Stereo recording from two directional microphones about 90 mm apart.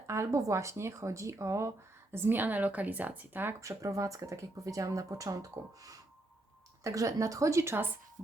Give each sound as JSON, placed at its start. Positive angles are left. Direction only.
{"t": 0.1, "sound": "speech", "side_deg": -35}
{"t": 3.6, "sound": "speech", "side_deg": -35}